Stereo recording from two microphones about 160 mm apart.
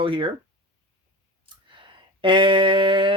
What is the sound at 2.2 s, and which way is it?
Speech, 30° right (ahead or behind).